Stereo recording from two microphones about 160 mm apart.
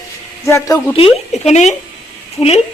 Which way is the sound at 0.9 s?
40° left (ahead or behind).